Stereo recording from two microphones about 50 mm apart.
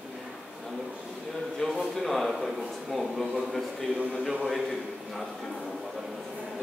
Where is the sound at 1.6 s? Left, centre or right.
Centre.